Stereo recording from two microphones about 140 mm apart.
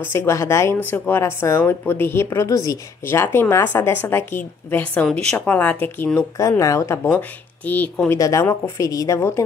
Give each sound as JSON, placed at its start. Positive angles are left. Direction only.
{"t": 0.0, "sound": "speech", "side_deg": 15}
{"t": 6.3, "sound": "speech", "side_deg": 20}
{"t": 7.1, "sound": "speech", "side_deg": 10}